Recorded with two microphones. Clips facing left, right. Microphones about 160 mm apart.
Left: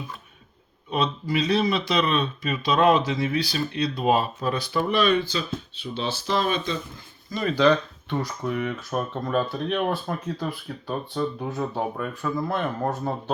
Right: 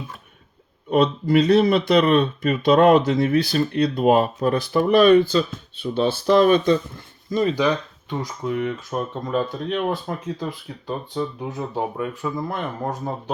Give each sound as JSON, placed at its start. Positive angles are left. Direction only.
{"t": 0.9, "sound": "speech", "side_deg": -55}
{"t": 8.2, "sound": "speech", "side_deg": -20}